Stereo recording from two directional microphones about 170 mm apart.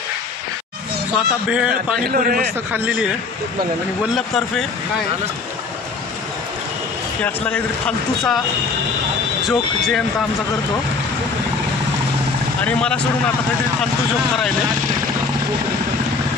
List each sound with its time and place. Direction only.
1.1 s a man's voice: 5° right (ahead or behind)
2.0 s a man's voice: 55° right (ahead or behind)
2.7 s speech: 5° right (ahead or behind)
7.2 s speech: 5° left (ahead or behind)
9.5 s speech: centre (ahead or behind)
12.6 s speech: 5° left (ahead or behind)